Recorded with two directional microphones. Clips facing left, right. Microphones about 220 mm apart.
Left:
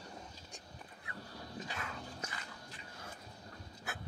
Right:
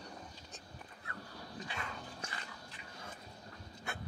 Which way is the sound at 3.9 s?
5° left (ahead or behind).